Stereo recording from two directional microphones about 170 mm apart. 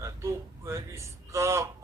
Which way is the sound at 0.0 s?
20° right (ahead or behind).